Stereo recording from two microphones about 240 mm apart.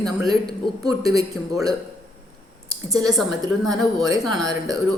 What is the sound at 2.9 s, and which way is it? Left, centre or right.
Speech, centre.